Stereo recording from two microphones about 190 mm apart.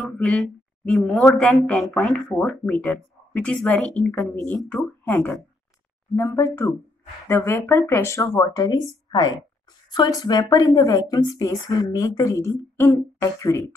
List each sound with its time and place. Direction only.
0.0 s a woman's voice: centre (ahead or behind)